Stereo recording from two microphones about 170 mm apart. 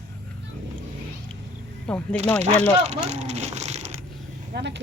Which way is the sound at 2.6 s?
40° right (ahead or behind).